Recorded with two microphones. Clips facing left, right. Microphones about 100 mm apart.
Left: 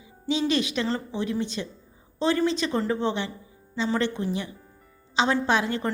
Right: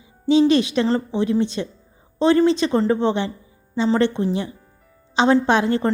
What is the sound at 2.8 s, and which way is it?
Speech, 65° right (ahead or behind).